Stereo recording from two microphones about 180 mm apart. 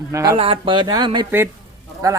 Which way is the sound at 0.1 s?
20° right (ahead or behind).